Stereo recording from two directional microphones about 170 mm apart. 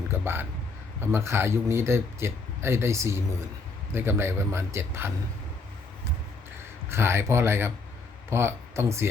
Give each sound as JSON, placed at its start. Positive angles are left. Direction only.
{"t": 0.1, "sound": "a sound", "side_deg": -15}
{"t": 1.1, "sound": "speech", "side_deg": -15}
{"t": 6.9, "sound": "speech", "side_deg": -15}